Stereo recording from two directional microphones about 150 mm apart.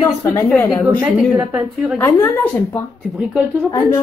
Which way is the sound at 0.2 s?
20° left (ahead or behind).